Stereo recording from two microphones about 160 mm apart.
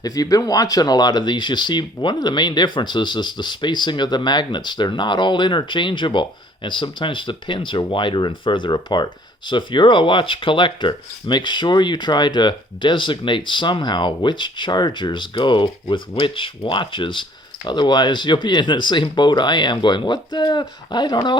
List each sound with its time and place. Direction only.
0.0 s speech: 25° left (ahead or behind)